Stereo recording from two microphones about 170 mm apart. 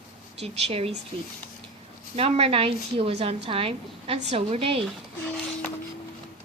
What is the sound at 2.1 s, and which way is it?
A woman's voice, 35° right (ahead or behind).